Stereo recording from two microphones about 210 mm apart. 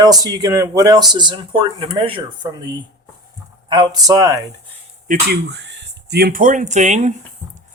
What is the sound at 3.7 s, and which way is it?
Speech, 20° right (ahead or behind).